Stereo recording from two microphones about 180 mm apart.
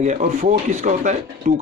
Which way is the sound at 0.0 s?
45° right (ahead or behind).